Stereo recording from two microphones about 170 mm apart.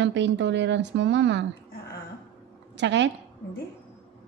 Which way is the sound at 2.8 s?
90° right.